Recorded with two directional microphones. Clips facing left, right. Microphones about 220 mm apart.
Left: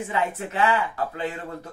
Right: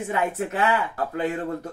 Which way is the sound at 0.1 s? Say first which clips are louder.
Right 3 dB; 45° right (ahead or behind).